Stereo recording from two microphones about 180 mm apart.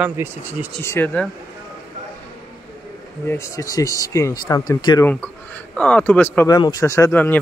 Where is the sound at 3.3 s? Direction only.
15° left (ahead or behind).